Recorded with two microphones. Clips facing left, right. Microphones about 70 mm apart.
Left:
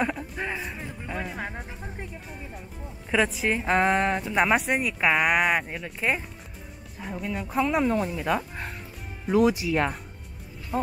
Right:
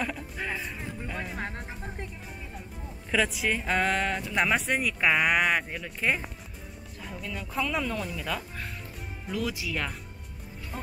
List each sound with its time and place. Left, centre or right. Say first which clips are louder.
0.0 s a sound: left 5 dB; centre
3.1 s a woman's voice: left 3 dB; left
7.3 s speech: left 6 dB; left
10.7 s speech: left 12 dB; left